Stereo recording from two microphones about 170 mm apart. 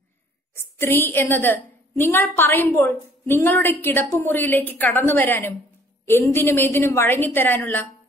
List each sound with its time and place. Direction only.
0.6 s a woman's voice: 15° left (ahead or behind)